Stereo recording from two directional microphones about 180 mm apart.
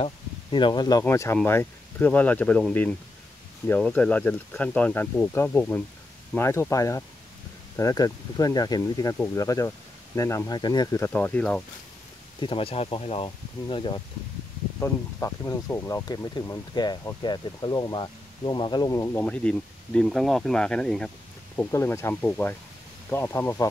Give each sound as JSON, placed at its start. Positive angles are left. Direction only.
{"t": 0.0, "sound": "speech", "side_deg": 25}
{"t": 12.4, "sound": "speech", "side_deg": 30}
{"t": 14.8, "sound": "speech", "side_deg": 15}
{"t": 19.2, "sound": "speech", "side_deg": 5}